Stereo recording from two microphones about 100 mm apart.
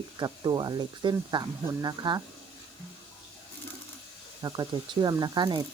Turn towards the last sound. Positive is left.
turn(degrees=-50)  # may be behind; listen again after turning